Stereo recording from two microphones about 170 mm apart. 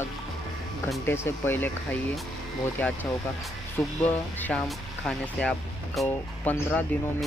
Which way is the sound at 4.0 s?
10° left (ahead or behind).